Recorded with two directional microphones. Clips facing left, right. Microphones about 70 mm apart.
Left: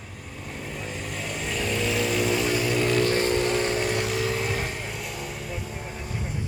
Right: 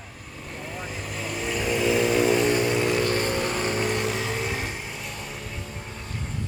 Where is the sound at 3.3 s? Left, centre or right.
Centre.